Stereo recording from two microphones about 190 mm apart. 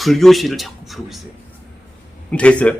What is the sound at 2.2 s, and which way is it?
Speech, 5° left (ahead or behind).